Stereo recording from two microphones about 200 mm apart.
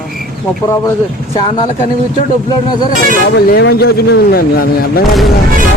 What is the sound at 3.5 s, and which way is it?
Speech, 50° left (ahead or behind).